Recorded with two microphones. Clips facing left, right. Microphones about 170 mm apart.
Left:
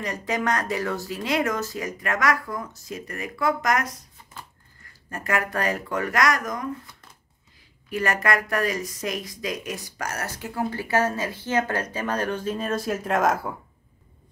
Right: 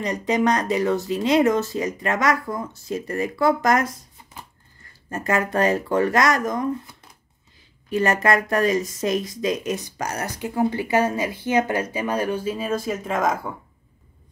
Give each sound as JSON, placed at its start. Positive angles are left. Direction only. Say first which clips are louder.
{"t": 0.0, "sound": "speech", "louder": "right 6 dB", "side_deg": -20}
{"t": 5.1, "sound": "speech", "louder": "right 4 dB", "side_deg": -25}